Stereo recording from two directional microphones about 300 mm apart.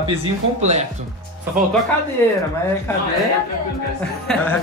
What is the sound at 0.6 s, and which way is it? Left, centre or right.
Speech, right.